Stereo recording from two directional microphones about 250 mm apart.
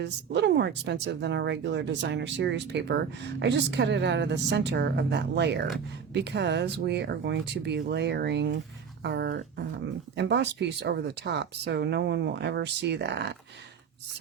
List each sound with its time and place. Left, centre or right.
0.0 s speech: right
9.0 s a sound: right
10.2 s speech: right